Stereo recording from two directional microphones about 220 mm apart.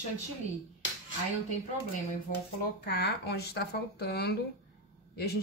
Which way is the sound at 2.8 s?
50° left (ahead or behind).